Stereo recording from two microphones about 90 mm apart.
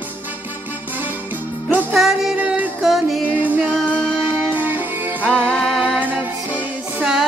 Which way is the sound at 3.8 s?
10° left (ahead or behind).